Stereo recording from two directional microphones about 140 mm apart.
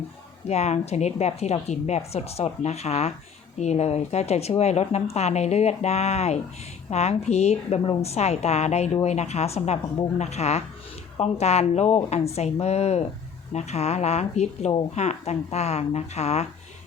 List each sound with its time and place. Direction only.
0.4 s a woman's voice: 50° left (ahead or behind)